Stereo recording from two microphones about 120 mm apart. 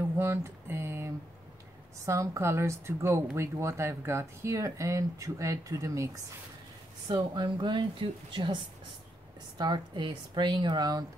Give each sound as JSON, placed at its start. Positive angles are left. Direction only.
{"t": 0.2, "sound": "a sound", "side_deg": -20}
{"t": 2.0, "sound": "speech", "side_deg": -25}
{"t": 7.1, "sound": "speech", "side_deg": -40}
{"t": 9.6, "sound": "speech", "side_deg": -40}